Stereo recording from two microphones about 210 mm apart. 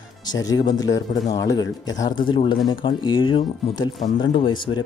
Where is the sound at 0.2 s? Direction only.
20° left (ahead or behind).